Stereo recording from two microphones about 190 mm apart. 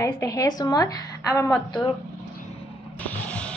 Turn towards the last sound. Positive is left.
turn(degrees=5)  # may be behind; listen again after turning